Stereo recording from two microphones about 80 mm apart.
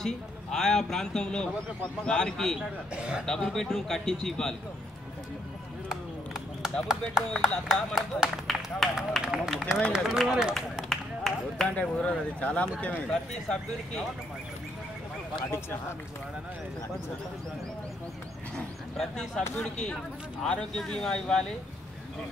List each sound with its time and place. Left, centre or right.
0.0 s a man's voice: centre
2.9 s a man's voice: centre
3.3 s a man's voice: centre
5.9 s clip-clop: centre
7.4 s speech: centre
10.9 s run: centre
11.7 s a man's voice: centre
18.9 s a man's voice: centre